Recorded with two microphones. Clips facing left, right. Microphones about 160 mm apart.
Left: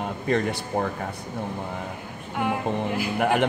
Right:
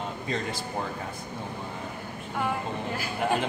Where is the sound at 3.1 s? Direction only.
70° left (ahead or behind).